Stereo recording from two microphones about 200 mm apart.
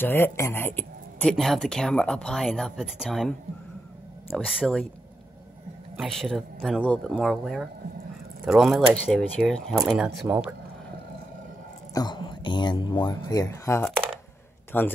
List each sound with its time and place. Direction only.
0.0 s speech: 10° left (ahead or behind)
4.5 s speech: centre (ahead or behind)
5.9 s speech: centre (ahead or behind)
11.9 s speech: 20° left (ahead or behind)